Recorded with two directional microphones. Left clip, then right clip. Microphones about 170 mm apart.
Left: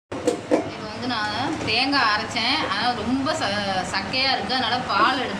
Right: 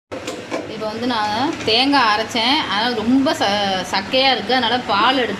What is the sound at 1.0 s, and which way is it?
A woman's voice, 45° right (ahead or behind).